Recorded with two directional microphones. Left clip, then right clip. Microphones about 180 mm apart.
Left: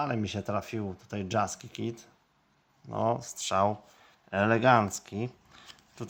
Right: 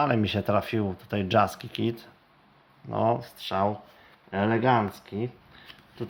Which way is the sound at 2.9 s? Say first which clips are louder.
Right 4 dB; 15° left (ahead or behind).